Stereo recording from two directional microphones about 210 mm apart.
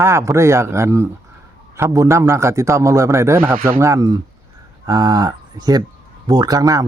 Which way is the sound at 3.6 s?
40° right (ahead or behind).